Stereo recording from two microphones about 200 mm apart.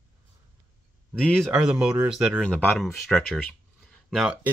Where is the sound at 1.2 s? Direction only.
5° left (ahead or behind).